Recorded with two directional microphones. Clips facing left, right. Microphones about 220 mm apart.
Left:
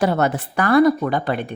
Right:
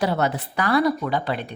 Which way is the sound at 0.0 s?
50° left (ahead or behind).